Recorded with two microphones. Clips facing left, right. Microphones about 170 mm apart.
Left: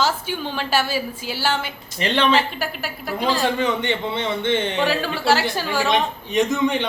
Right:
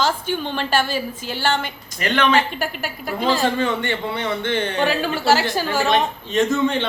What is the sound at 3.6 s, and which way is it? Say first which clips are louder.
A man's voice: even; 20° left (ahead or behind).